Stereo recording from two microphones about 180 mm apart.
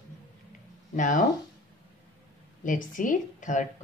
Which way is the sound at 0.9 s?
45° left (ahead or behind).